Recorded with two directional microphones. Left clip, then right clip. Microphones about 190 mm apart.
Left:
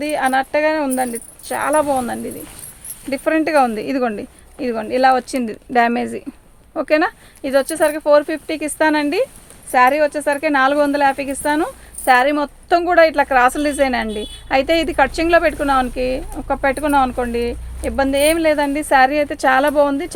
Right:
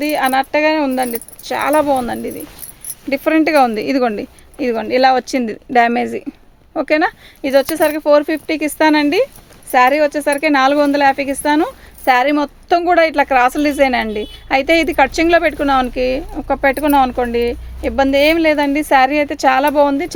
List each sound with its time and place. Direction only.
0.0 s speech: 50° right (ahead or behind)